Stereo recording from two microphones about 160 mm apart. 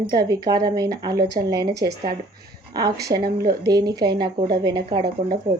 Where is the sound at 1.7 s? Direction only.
90° right.